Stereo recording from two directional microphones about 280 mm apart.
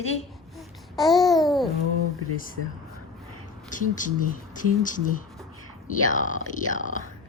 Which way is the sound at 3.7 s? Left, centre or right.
Left.